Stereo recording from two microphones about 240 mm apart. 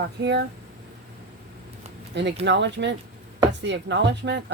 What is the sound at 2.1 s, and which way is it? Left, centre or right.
A woman's voice, right.